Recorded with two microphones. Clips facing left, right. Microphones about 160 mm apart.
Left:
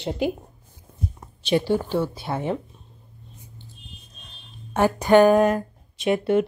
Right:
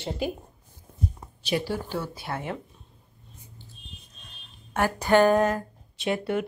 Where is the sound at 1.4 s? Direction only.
25° left (ahead or behind).